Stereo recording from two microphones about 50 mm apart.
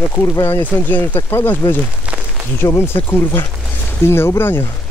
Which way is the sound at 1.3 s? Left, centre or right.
Left.